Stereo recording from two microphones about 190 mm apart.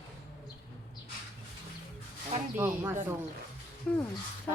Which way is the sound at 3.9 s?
5° left (ahead or behind).